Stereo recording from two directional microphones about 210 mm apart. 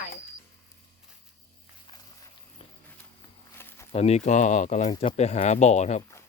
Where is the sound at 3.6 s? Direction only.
10° left (ahead or behind).